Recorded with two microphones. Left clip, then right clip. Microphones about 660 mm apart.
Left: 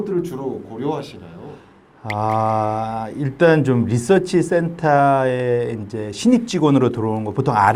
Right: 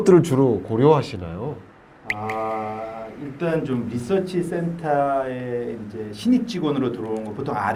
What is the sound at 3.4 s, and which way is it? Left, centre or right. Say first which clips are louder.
Speech: left 9 dB; left.